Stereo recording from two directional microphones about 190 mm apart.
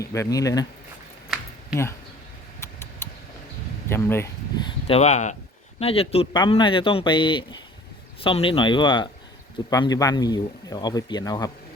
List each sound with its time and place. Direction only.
0.0 s speech: 15° left (ahead or behind)
1.3 s a sound: centre (ahead or behind)
1.7 s speech: 15° left (ahead or behind)
2.6 s tick: 15° left (ahead or behind)
3.8 s speech: 15° left (ahead or behind)